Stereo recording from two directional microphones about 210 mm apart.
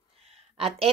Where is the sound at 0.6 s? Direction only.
25° right (ahead or behind).